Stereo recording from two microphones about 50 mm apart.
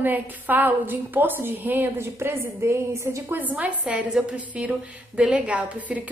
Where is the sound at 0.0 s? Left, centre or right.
Right.